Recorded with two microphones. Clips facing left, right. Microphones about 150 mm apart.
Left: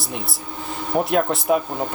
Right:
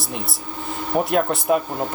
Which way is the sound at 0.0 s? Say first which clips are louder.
Even; centre (ahead or behind).